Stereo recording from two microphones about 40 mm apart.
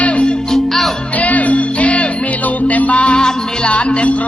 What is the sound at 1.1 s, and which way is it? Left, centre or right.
Music, left.